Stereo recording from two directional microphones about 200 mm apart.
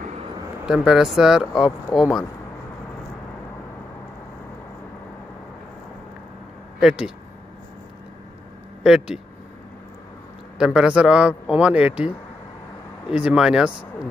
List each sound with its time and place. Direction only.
0.7 s a man's voice: centre (ahead or behind)
6.8 s speech: 5° right (ahead or behind)
8.8 s a man's voice: 5° right (ahead or behind)
10.6 s a man's voice: 5° right (ahead or behind)
13.1 s a man's voice: 5° right (ahead or behind)